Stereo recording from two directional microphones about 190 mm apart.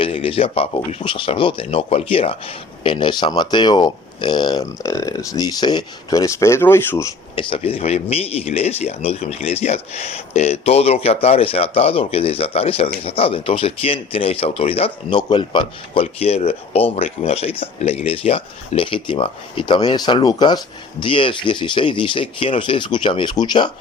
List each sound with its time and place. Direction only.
0.0 s speech: 30° left (ahead or behind)